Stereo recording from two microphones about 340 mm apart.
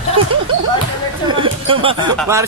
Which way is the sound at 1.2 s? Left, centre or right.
Centre.